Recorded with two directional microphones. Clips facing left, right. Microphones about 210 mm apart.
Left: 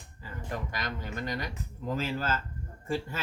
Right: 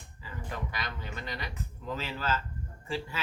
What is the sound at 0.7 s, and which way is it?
Speech, 45° left (ahead or behind).